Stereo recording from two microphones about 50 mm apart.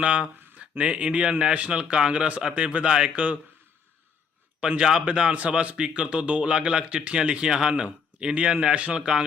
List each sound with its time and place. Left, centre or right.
0.0 s a man's voice: right
4.8 s a man's voice: centre